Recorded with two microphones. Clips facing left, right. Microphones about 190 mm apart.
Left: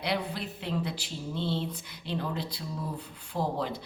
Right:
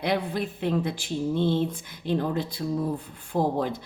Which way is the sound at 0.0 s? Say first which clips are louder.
Right 5 dB; 50° right (ahead or behind).